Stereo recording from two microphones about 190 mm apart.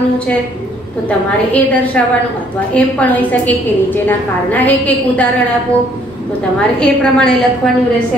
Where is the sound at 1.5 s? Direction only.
5° left (ahead or behind).